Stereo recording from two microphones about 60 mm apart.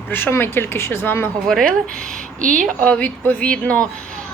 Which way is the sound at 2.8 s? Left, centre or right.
Left.